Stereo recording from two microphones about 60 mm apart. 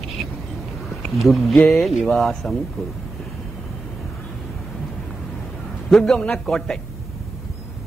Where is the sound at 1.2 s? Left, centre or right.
Centre.